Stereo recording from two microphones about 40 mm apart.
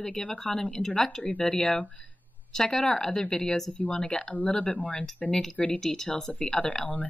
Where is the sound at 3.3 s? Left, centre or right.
Left.